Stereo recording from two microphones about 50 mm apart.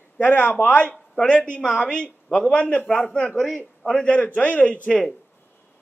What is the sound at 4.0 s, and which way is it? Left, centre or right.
Speech, left.